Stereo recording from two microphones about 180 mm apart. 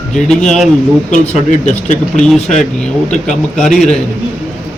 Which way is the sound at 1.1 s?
40° left (ahead or behind).